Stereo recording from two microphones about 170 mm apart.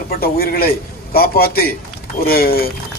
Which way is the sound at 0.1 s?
65° left (ahead or behind).